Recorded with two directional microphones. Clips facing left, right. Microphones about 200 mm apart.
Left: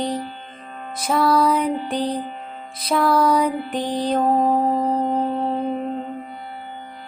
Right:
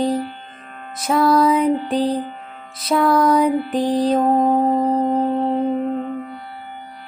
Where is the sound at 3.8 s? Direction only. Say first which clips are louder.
Right 6 dB; 35° right (ahead or behind).